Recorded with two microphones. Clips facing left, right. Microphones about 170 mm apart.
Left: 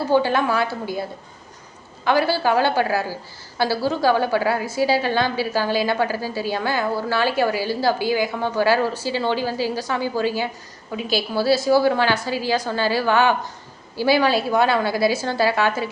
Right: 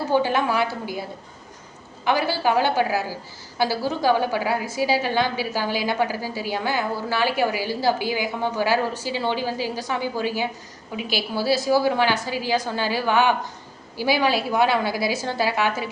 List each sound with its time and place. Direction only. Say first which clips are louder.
0.1 s a woman's voice: left 2 dB; 15° right (ahead or behind)
2.0 s a woman's voice: left 3 dB; 15° right (ahead or behind)